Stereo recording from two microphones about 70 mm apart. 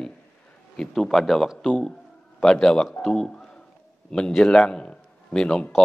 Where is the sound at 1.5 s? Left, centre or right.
Centre.